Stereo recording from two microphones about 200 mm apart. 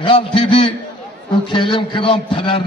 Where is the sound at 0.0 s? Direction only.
25° left (ahead or behind).